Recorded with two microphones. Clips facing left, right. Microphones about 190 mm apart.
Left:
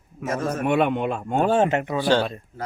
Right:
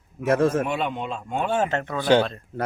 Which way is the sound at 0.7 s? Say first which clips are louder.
Left 6 dB; 60° left (ahead or behind).